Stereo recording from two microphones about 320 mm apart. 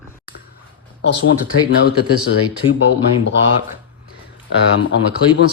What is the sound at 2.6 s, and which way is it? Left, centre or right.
Speech, centre.